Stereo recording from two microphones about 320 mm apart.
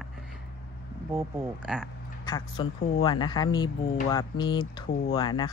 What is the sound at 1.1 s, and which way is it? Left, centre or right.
Speech, centre.